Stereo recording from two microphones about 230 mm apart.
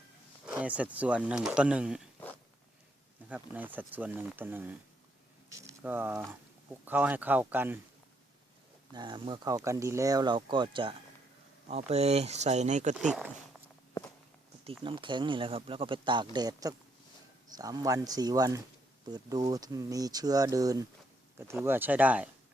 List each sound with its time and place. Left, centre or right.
0.4 s a sound: centre
0.9 s speech: centre
3.2 s speech: centre
5.8 s speech: centre
8.9 s speech: centre
13.1 s speech: centre
14.8 s speech: right